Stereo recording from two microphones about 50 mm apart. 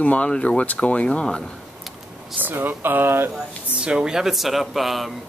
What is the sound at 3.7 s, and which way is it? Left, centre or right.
Speech, centre.